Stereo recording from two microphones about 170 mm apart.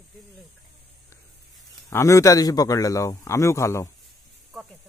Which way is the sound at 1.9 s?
20° left (ahead or behind).